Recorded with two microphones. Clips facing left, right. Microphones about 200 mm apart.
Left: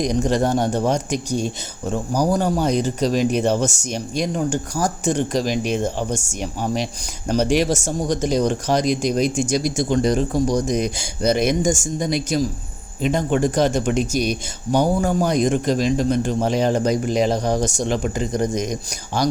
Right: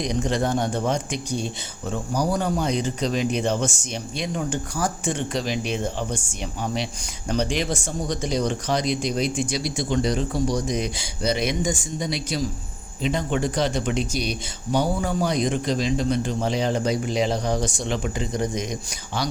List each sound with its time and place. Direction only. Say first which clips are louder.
0.0 s a man's voice: left 5 dB; 45° left (ahead or behind)